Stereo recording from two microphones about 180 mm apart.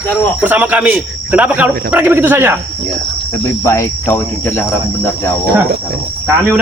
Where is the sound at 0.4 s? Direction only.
10° right (ahead or behind).